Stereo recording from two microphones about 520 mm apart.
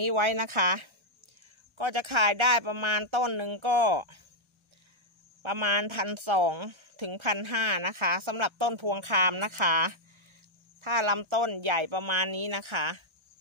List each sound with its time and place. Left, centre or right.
0.0 s speech: right
5.4 s speech: right